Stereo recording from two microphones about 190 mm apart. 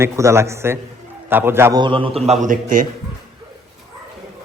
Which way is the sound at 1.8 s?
25° right (ahead or behind).